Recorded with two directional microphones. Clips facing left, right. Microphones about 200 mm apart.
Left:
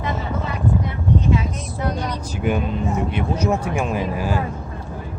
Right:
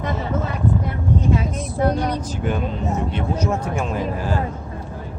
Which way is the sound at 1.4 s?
50° right (ahead or behind).